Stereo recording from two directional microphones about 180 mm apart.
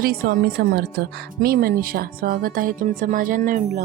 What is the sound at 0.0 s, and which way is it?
Music, 55° right (ahead or behind).